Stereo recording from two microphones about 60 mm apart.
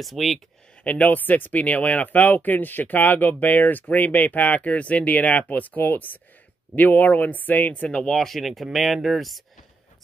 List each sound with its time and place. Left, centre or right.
0.0 s speech: centre
0.8 s speech: left
8.0 s speech: centre